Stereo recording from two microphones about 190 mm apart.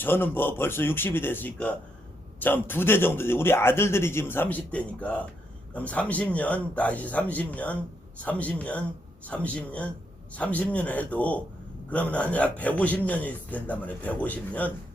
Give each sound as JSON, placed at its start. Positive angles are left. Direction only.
{"t": 0.0, "sound": "a man's voice", "side_deg": 10}